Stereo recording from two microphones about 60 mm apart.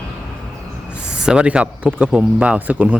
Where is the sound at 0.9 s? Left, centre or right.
Centre.